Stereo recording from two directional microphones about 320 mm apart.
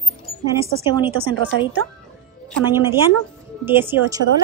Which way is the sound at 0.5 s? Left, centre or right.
Centre.